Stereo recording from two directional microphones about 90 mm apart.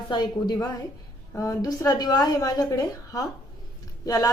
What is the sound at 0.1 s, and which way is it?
Speech, 55° left (ahead or behind).